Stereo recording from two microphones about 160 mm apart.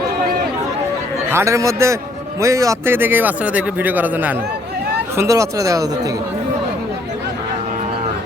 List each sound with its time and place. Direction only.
1.3 s speech: 15° right (ahead or behind)